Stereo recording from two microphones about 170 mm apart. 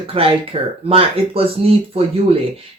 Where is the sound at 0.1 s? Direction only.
35° right (ahead or behind).